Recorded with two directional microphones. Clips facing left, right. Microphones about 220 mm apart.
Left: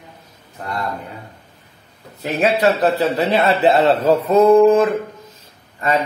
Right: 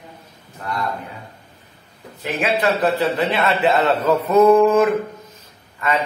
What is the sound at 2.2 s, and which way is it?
A man's voice, 40° left (ahead or behind).